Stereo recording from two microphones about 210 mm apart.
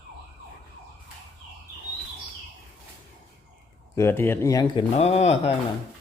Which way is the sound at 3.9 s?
10° left (ahead or behind).